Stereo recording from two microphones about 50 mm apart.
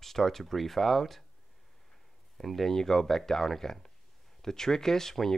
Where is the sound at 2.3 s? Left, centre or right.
Centre.